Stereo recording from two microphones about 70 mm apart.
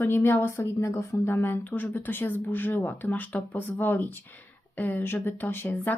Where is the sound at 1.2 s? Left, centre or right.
Left.